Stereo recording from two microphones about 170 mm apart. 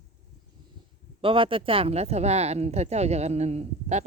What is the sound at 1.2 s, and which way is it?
Speech, 30° right (ahead or behind).